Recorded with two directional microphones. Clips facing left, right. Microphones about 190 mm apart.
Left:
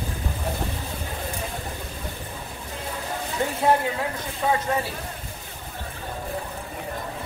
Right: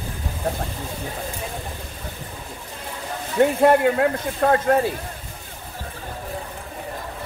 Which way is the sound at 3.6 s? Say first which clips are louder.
Right 4 dB; 65° right (ahead or behind).